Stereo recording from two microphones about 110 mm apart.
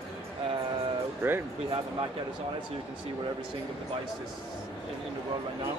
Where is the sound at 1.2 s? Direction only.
20° right (ahead or behind).